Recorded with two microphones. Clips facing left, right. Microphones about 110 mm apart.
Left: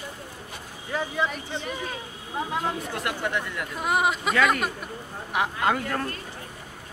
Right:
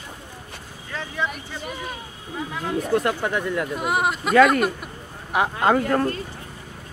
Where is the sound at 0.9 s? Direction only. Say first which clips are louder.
Left 4 dB; 10° left (ahead or behind).